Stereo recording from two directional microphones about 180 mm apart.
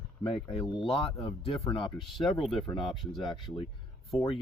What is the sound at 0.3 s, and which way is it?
Speech, 30° left (ahead or behind).